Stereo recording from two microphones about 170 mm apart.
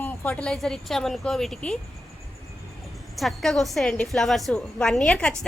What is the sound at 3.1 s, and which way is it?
A woman's voice, centre (ahead or behind).